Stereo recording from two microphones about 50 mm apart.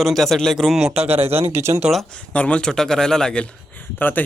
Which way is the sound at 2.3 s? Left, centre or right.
Left.